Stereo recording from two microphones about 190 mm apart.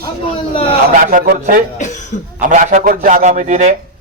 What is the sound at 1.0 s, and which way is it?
A man's voice, 50° right (ahead or behind).